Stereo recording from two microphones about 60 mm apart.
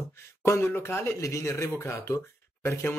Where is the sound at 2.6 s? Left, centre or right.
Left.